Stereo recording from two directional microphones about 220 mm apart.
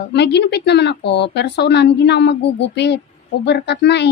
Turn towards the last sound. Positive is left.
turn(degrees=50)  # may be behind; listen again after turning